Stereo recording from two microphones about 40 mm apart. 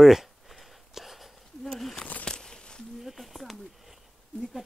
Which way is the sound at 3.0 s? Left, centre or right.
Centre.